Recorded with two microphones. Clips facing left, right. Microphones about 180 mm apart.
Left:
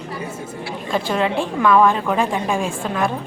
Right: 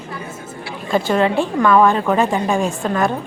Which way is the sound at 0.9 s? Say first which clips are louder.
Right 4 dB; centre (ahead or behind).